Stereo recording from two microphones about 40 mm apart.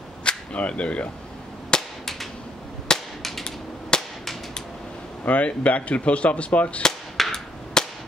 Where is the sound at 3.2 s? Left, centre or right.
Centre.